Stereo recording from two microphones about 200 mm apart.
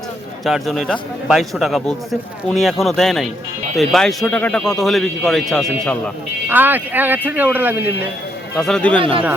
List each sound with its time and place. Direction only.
0.4 s speech: centre (ahead or behind)
6.5 s speech: 10° right (ahead or behind)
8.5 s speech: 5° left (ahead or behind)
9.0 s speech: 25° right (ahead or behind)